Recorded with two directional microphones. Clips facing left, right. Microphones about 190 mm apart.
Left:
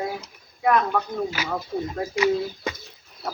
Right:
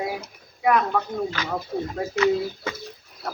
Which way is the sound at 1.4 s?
10° left (ahead or behind).